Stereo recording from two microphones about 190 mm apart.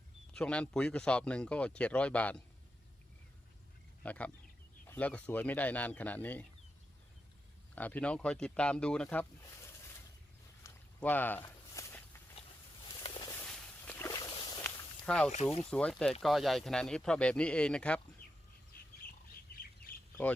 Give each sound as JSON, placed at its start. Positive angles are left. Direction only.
{"t": 0.3, "sound": "speech", "side_deg": 5}
{"t": 4.0, "sound": "speech", "side_deg": 5}
{"t": 7.8, "sound": "speech", "side_deg": 10}
{"t": 10.6, "sound": "walk", "side_deg": 10}
{"t": 13.3, "sound": "walk", "side_deg": 5}
{"t": 14.6, "sound": "snake", "side_deg": 5}
{"t": 15.7, "sound": "speech", "side_deg": 5}